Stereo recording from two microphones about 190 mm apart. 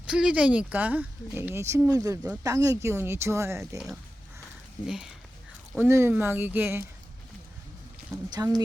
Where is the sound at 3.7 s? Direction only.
5° right (ahead or behind).